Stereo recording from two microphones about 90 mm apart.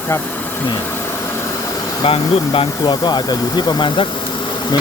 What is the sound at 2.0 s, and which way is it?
Speech, 90° left.